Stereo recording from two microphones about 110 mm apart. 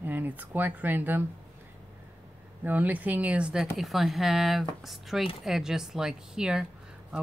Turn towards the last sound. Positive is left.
turn(degrees=-5)  # may be behind; listen again after turning